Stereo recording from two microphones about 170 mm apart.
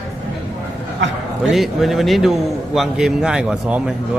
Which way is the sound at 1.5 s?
Centre (ahead or behind).